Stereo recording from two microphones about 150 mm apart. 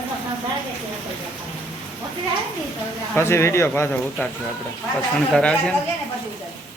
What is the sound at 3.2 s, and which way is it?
Speech, 15° left (ahead or behind).